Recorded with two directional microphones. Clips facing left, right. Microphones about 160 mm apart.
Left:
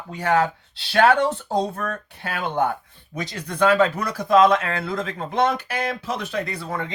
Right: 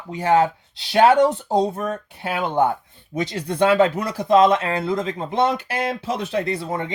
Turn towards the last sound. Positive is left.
turn(degrees=-25)  # may be behind; listen again after turning